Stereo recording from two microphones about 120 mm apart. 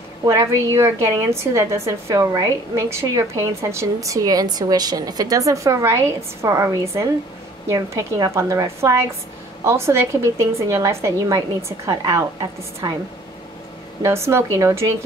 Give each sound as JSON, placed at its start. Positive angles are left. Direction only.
{"t": 0.2, "sound": "a woman's voice", "side_deg": -25}
{"t": 14.0, "sound": "a woman's voice", "side_deg": -20}